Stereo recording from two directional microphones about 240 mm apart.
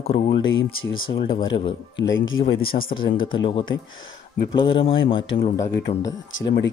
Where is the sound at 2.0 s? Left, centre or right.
Left.